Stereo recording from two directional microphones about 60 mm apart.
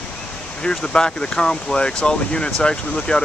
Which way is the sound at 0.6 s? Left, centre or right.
Centre.